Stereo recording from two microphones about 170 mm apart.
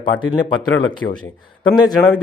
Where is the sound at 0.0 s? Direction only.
25° left (ahead or behind).